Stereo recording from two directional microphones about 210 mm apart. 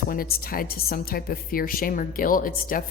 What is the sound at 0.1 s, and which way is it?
Speech, 45° left (ahead or behind).